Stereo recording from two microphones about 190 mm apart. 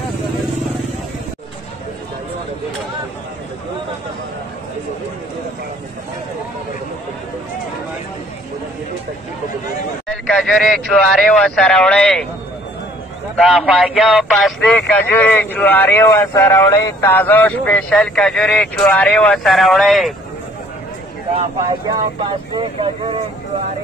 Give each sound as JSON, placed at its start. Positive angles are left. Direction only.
{"t": 10.4, "sound": "a man's voice", "side_deg": 5}
{"t": 13.4, "sound": "a man's voice", "side_deg": 0}
{"t": 21.5, "sound": "speech", "side_deg": -20}